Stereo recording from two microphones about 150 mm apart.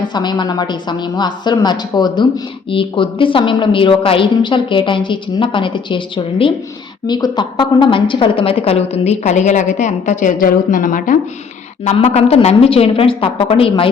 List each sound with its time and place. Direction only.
0.0 s a woman's voice: 30° left (ahead or behind); by 11.2 s 60° left (ahead or behind)
11.9 s a woman's voice: 45° left (ahead or behind)